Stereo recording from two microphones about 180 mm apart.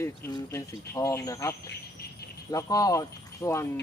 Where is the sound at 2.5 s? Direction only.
20° left (ahead or behind).